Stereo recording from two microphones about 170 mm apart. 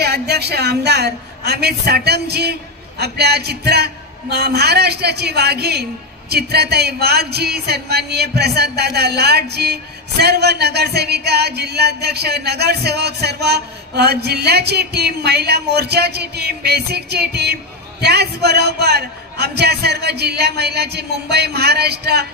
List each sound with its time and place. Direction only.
0.0 s music: 70° right (ahead or behind)